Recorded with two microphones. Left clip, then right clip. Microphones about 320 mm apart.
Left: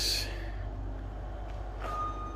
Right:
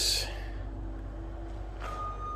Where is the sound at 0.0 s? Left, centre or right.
Centre.